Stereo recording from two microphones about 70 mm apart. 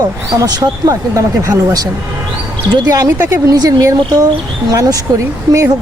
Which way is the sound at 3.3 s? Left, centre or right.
Right.